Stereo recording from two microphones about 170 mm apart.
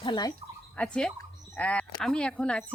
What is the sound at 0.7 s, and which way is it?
Speech, 5° left (ahead or behind).